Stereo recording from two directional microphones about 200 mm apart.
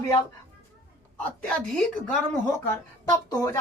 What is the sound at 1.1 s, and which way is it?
Speech, 5° left (ahead or behind).